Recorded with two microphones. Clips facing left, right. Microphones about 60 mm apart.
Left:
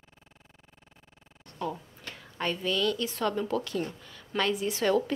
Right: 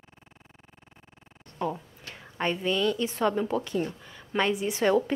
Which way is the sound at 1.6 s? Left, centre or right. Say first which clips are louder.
Right 2 dB; right.